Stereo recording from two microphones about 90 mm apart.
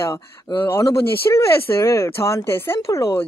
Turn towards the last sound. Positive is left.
turn(degrees=35)  # may be behind; listen again after turning